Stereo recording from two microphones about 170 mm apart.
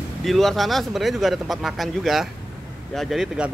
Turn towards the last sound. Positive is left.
turn(degrees=-5)  # may be behind; listen again after turning